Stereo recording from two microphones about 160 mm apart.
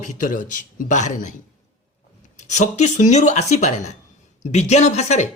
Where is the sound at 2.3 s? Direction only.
45° left (ahead or behind).